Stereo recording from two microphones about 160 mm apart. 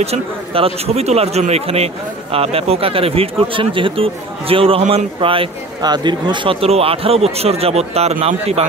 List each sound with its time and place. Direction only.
0.0 s speech: 40° right (ahead or behind)